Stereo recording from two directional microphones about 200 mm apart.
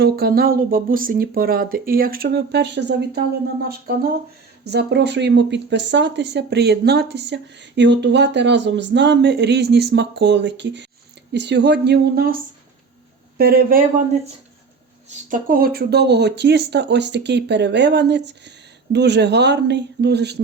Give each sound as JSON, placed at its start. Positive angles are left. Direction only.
{"t": 0.0, "sound": "speech", "side_deg": -50}
{"t": 4.6, "sound": "speech", "side_deg": -55}
{"t": 13.4, "sound": "speech", "side_deg": -50}
{"t": 15.1, "sound": "speech", "side_deg": -45}